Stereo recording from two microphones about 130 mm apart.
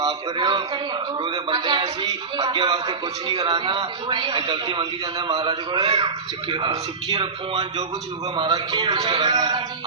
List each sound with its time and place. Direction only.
0.0 s speech: 35° right (ahead or behind)